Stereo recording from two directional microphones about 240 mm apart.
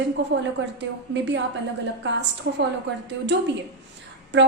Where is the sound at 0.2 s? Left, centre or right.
Right.